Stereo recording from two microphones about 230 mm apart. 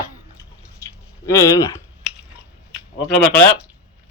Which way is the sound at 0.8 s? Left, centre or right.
Centre.